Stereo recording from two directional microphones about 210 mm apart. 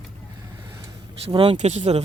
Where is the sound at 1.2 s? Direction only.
25° right (ahead or behind).